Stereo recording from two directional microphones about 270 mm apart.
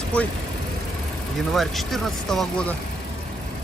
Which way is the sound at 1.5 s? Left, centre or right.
Centre.